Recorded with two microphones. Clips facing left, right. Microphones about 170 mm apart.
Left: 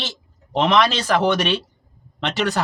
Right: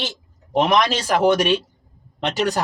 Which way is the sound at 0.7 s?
40° right (ahead or behind).